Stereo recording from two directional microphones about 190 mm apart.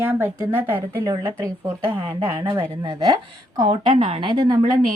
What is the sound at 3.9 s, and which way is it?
Speech, 30° right (ahead or behind).